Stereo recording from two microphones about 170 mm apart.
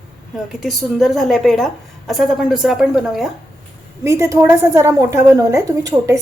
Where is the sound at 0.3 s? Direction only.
Centre (ahead or behind).